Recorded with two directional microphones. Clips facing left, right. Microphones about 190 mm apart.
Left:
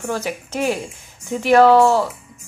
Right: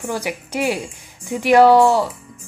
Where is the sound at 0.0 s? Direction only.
15° right (ahead or behind).